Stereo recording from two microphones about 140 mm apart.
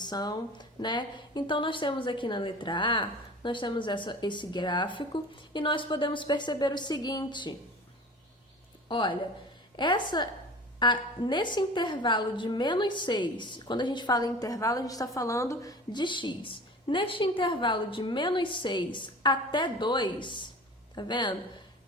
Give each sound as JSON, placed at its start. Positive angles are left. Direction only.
{"t": 0.0, "sound": "a woman's voice", "side_deg": 30}
{"t": 8.9, "sound": "a woman's voice", "side_deg": 35}